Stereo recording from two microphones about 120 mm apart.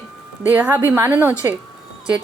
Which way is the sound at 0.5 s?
15° right (ahead or behind).